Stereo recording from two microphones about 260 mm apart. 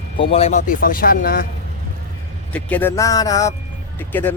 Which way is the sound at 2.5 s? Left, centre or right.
Centre.